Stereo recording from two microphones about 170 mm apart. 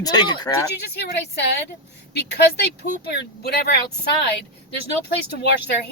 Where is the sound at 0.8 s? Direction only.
80° left.